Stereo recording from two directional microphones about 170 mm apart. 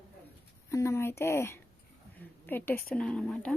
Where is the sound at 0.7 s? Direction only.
15° left (ahead or behind).